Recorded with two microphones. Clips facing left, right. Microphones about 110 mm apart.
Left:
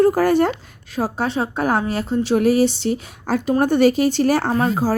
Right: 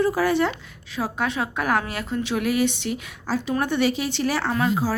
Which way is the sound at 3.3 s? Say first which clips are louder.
Left 6 dB; 55° left (ahead or behind).